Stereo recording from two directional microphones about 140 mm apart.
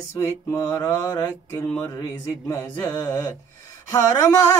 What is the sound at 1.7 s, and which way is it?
Mantra, 20° left (ahead or behind).